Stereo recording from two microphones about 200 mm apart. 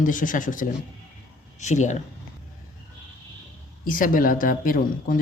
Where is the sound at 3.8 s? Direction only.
45° left (ahead or behind).